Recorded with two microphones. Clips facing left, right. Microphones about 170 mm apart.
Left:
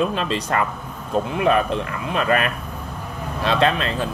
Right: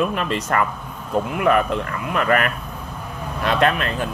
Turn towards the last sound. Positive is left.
turn(degrees=25)  # may be behind; listen again after turning